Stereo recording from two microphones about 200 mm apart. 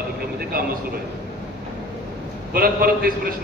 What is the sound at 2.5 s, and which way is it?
Speech, 50° right (ahead or behind).